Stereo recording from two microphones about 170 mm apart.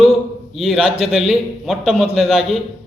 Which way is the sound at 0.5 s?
Centre (ahead or behind).